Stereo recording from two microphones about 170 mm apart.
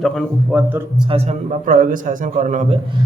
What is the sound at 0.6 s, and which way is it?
Speech, 10° right (ahead or behind).